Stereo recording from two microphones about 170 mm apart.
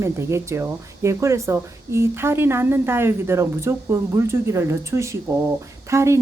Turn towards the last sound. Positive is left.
turn(degrees=-15)  # may be behind; listen again after turning